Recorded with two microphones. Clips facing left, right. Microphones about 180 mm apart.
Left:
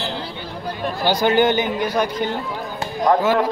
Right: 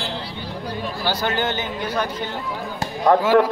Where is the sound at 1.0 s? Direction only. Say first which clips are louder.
Left 7 dB; 15° left (ahead or behind).